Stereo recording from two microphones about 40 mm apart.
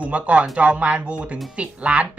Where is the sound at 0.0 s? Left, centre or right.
Right.